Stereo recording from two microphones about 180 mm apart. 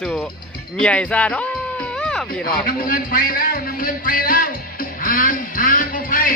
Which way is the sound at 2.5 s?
55° left (ahead or behind).